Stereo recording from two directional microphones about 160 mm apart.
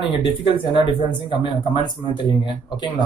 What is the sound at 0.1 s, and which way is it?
Speech, 30° left (ahead or behind).